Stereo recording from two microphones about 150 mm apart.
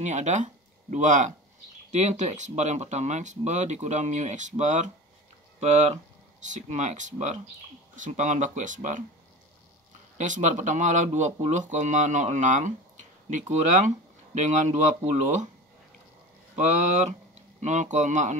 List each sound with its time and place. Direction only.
0.0 s speech: 50° right (ahead or behind)
10.1 s speech: 55° right (ahead or behind)
16.5 s speech: 50° right (ahead or behind)